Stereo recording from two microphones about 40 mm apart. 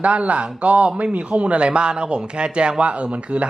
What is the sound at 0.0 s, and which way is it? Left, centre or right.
A man's voice, right.